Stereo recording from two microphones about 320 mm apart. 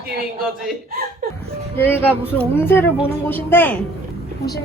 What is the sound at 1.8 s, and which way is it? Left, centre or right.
A woman's voice, centre.